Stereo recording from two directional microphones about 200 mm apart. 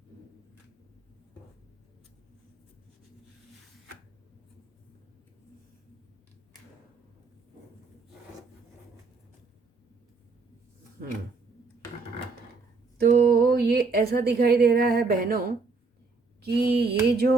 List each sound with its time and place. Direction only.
13.0 s a woman's voice: 50° right (ahead or behind)